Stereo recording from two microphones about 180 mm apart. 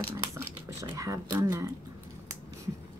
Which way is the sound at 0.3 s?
15° right (ahead or behind).